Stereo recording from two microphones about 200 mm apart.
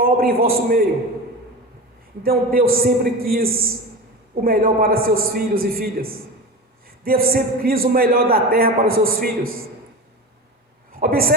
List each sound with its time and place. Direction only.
0.0 s a man's voice: 45° right (ahead or behind)
2.2 s a man's voice: 50° right (ahead or behind)
11.0 s a man's voice: 45° right (ahead or behind)